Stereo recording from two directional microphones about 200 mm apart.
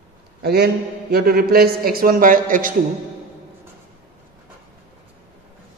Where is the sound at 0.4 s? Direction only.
55° right (ahead or behind).